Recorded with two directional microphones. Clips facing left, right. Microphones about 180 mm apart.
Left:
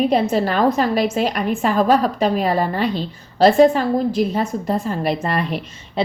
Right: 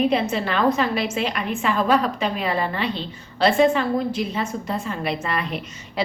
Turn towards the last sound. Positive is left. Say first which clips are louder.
# left 4 dB
turn(degrees=25)  # may be behind; listen again after turning